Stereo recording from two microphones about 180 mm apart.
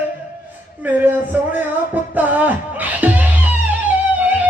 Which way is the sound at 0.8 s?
10° right (ahead or behind).